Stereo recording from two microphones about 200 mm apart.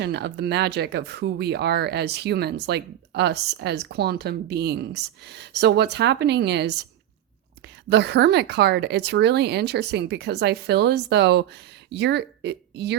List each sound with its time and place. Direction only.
0.0 s speech: 55° right (ahead or behind)
7.9 s speech: 55° right (ahead or behind)